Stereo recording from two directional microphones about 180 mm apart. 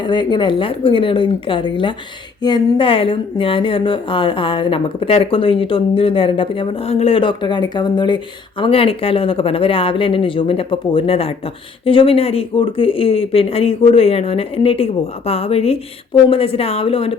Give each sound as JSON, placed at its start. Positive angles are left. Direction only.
{"t": 0.0, "sound": "speech", "side_deg": 25}